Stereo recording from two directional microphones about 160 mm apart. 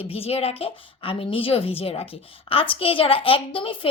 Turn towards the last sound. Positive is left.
turn(degrees=35)  # may be behind; listen again after turning